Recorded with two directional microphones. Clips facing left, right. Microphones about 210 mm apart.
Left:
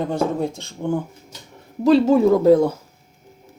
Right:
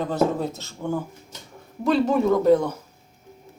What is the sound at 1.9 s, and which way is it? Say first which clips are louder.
Speech: left 5 dB; 30° left (ahead or behind).